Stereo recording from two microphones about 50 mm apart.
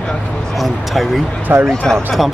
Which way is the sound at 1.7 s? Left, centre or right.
Centre.